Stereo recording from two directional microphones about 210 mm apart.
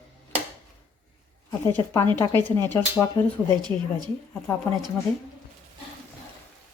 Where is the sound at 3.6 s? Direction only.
20° right (ahead or behind).